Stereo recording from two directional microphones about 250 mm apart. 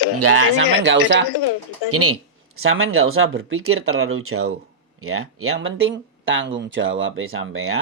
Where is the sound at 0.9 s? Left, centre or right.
Right.